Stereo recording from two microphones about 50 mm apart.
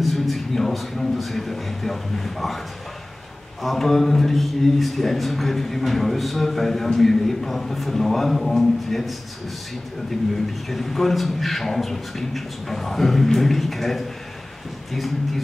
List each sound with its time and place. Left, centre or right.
0.0 s a man's voice: centre
3.6 s a man's voice: centre
10.3 s a man's voice: centre